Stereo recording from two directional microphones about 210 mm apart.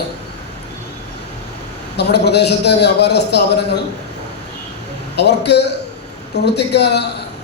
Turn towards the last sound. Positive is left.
turn(degrees=55)  # may be behind; listen again after turning